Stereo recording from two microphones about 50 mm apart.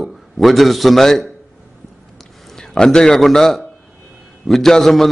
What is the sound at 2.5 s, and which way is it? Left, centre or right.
A man's voice, centre.